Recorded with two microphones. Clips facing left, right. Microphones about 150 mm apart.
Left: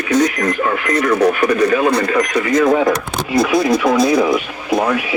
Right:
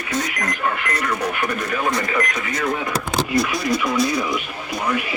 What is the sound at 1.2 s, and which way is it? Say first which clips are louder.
Speech: left 11 dB; 85° left.